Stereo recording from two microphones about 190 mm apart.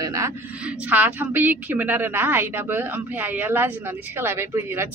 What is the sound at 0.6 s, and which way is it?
A woman's voice, 5° right (ahead or behind).